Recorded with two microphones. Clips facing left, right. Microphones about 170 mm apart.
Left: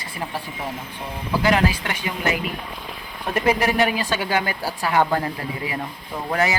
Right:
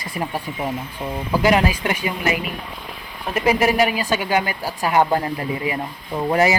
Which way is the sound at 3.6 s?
10° right (ahead or behind).